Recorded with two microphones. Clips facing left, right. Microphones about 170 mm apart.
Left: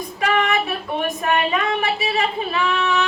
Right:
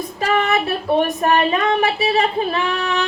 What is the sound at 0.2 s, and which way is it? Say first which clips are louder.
Speech: right 2 dB; 35° right (ahead or behind).